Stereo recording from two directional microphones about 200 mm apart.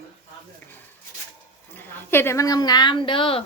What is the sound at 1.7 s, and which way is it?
A woman's voice, 10° left (ahead or behind).